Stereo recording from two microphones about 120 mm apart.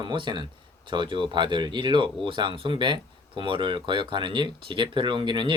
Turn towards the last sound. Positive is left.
turn(degrees=-40)  # may be behind; listen again after turning